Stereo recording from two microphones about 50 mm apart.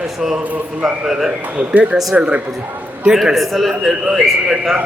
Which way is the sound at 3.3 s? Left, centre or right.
Centre.